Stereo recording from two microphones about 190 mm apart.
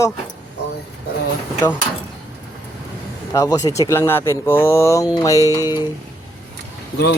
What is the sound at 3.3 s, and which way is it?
Speech, 15° left (ahead or behind).